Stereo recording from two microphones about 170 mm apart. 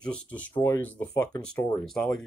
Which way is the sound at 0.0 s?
10° left (ahead or behind).